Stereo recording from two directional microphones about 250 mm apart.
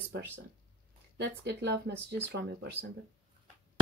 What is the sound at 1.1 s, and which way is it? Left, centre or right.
Speech, right.